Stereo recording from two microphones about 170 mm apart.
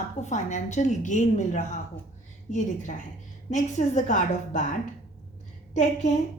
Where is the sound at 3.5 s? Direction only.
45° left (ahead or behind).